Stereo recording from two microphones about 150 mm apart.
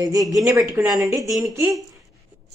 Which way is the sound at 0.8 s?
10° right (ahead or behind).